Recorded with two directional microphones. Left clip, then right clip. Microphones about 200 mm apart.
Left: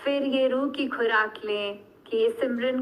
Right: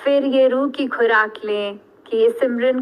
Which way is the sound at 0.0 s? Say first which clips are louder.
Right 9 dB; 35° right (ahead or behind).